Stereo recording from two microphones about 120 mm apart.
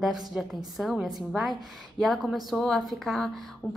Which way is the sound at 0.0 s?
5° right (ahead or behind).